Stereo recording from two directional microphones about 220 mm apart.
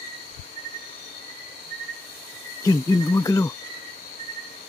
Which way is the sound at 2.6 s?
15° left (ahead or behind).